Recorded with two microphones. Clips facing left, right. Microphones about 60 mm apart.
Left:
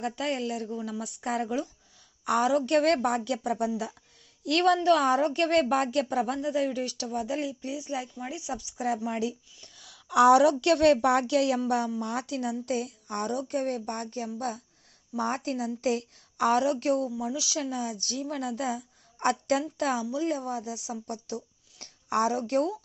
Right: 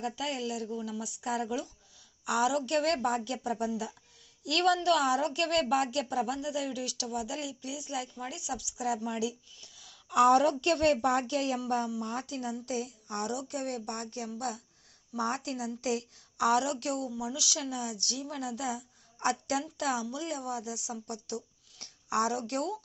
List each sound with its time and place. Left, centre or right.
0.0 s speech: left
4.4 s a woman's voice: left
9.7 s a woman's voice: left
11.9 s a woman's voice: left